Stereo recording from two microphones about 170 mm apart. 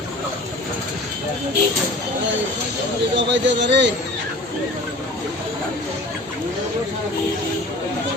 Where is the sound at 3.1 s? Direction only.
90° right.